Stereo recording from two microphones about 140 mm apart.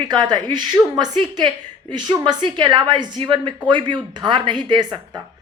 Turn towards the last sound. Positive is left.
turn(degrees=-30)  # may be behind; listen again after turning